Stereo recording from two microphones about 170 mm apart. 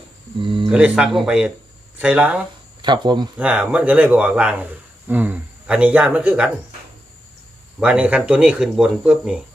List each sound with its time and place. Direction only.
0.4 s a sound: 30° right (ahead or behind)
0.7 s speech: 5° right (ahead or behind)
2.8 s speech: 25° right (ahead or behind)
3.3 s speech: 5° right (ahead or behind)
7.8 s speech: 5° right (ahead or behind)